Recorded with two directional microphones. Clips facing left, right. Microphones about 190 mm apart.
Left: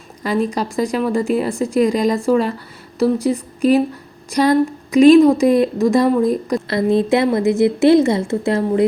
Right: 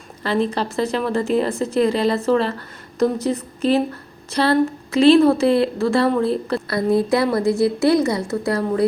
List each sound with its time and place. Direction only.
0.2 s a woman's voice: 10° left (ahead or behind)